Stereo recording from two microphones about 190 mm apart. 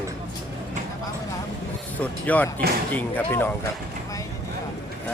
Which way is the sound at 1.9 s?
10° left (ahead or behind).